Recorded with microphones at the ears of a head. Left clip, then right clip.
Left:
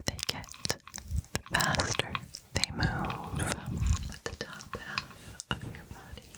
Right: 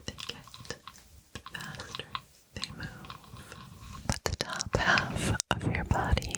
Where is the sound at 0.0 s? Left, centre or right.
Left.